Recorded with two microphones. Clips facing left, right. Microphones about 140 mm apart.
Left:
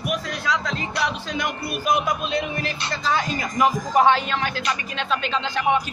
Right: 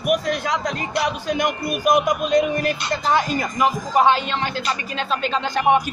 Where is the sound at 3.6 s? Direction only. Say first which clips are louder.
Even; 15° right (ahead or behind).